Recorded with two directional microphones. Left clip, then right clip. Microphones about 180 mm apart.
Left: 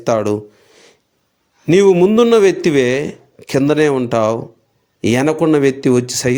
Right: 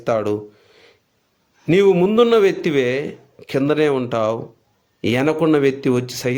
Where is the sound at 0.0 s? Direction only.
30° left (ahead or behind).